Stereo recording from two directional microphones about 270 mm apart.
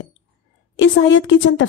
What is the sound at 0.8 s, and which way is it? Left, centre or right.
Speech, left.